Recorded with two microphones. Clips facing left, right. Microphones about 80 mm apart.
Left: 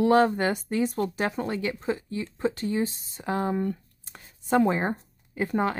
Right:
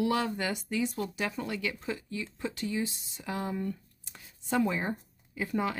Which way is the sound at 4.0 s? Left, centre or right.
Left.